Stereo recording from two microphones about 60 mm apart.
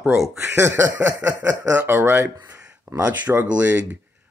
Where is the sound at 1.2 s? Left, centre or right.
Right.